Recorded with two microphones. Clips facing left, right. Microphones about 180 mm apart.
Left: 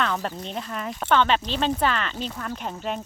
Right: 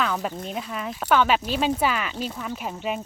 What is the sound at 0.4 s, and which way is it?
Speech, 5° right (ahead or behind).